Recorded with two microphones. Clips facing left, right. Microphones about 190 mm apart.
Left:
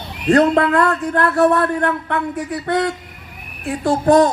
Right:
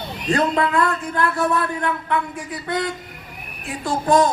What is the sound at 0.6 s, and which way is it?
Speech, 65° left (ahead or behind).